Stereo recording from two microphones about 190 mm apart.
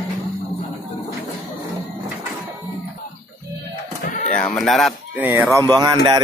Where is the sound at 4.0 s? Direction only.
40° left (ahead or behind).